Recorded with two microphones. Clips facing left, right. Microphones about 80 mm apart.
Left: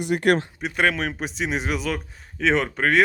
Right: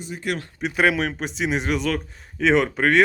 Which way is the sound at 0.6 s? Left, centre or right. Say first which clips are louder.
Right 2 dB; centre.